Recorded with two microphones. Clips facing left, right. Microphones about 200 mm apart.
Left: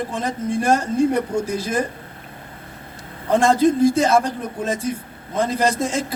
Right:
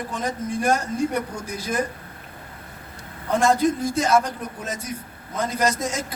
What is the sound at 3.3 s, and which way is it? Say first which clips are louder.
A man's voice: left 4 dB; 30° left (ahead or behind).